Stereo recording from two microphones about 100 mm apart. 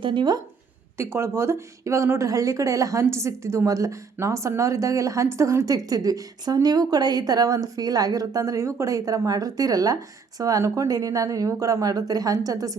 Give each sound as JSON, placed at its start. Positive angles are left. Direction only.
{"t": 0.0, "sound": "speech", "side_deg": -50}
{"t": 0.9, "sound": "a woman's voice", "side_deg": -25}